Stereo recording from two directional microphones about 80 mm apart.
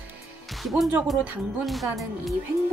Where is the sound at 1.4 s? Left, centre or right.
Centre.